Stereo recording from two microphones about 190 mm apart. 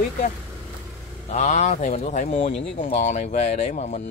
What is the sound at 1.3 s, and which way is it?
Speech, 40° left (ahead or behind).